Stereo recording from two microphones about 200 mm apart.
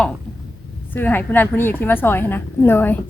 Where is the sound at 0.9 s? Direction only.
10° left (ahead or behind).